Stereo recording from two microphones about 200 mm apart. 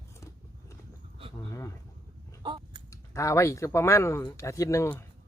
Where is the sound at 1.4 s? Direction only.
15° left (ahead or behind).